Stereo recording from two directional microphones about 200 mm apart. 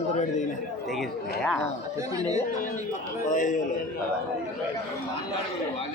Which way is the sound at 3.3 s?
40° left (ahead or behind).